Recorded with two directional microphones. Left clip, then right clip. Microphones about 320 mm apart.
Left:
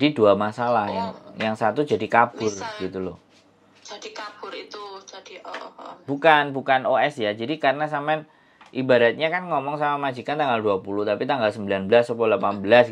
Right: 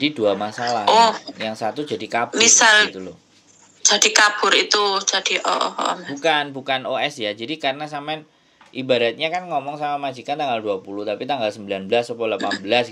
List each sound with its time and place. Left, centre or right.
0.0 s speech: left
2.3 s a woman's voice: right
6.1 s speech: left